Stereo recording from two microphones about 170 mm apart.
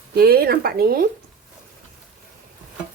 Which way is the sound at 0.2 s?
65° right (ahead or behind).